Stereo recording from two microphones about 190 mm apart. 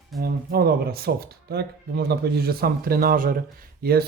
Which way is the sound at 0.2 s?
55° right (ahead or behind).